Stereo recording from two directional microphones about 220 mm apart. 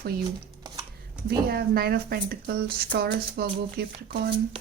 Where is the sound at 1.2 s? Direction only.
45° right (ahead or behind).